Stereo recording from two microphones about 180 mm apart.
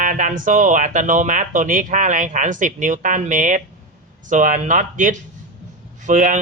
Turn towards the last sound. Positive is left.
turn(degrees=-45)  # may be behind; listen again after turning